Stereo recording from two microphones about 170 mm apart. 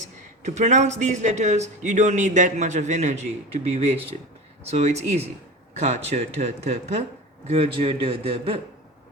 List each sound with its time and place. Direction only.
0.4 s a man's voice: 45° right (ahead or behind)